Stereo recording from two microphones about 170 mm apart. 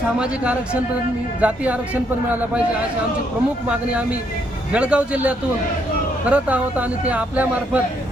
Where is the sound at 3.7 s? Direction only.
5° right (ahead or behind).